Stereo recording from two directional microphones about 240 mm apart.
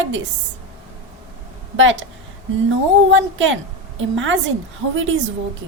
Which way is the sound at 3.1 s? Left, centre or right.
Right.